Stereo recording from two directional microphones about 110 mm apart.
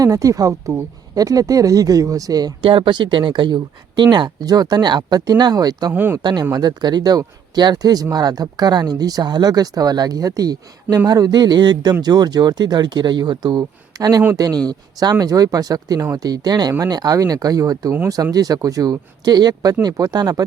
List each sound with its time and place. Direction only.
0.0 s speech: 30° right (ahead or behind)
2.6 s speech: 50° right (ahead or behind); by 5.9 s 35° right (ahead or behind)
5.9 s speech: 15° right (ahead or behind)
6.5 s speech: 40° right (ahead or behind)